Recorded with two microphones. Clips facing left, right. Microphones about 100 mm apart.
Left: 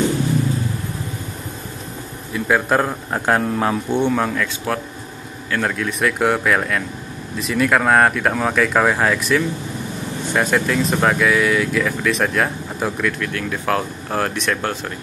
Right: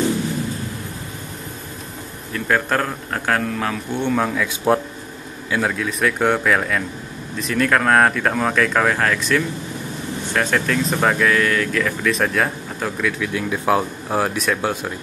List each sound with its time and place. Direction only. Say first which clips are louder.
2.3 s a man's voice: left 2 dB; 10° left (ahead or behind); by 4.0 s 25° left (ahead or behind)
4.0 s speech: right 2 dB; centre (ahead or behind)
5.5 s speech: even; 5° right (ahead or behind)
13.3 s speech: right 2 dB; 10° right (ahead or behind)